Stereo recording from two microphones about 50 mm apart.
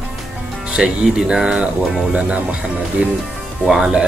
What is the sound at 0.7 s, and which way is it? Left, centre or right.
Speech, centre.